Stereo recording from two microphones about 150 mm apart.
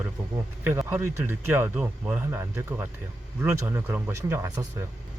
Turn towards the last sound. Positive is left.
turn(degrees=-20)  # may be behind; listen again after turning